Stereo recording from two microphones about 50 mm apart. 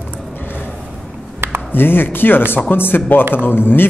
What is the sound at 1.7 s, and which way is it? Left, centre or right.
A man's voice, left.